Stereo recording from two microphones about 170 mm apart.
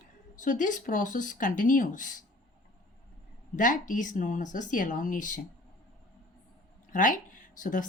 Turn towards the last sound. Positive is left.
turn(degrees=50)  # may be behind; listen again after turning